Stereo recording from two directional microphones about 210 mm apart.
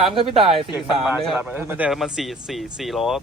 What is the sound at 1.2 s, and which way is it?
Speech, centre (ahead or behind).